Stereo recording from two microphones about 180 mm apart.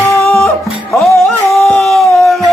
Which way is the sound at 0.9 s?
Centre (ahead or behind).